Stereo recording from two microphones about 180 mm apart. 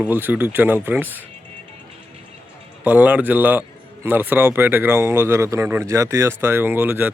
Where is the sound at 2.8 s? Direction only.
10° right (ahead or behind).